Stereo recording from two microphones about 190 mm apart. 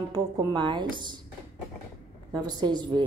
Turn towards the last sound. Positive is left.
turn(degrees=-25)  # may be behind; listen again after turning